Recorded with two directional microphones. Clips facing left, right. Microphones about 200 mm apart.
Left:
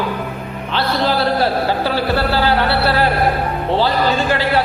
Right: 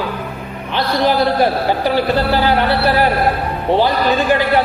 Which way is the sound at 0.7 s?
15° right (ahead or behind).